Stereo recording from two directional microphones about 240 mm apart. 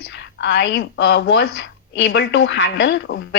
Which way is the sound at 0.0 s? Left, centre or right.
Left.